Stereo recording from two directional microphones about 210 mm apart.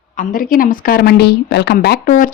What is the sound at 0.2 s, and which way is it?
A man's voice, 40° left (ahead or behind).